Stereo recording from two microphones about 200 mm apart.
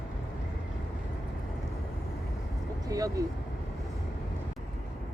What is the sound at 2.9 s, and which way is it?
Vehicle, 20° right (ahead or behind).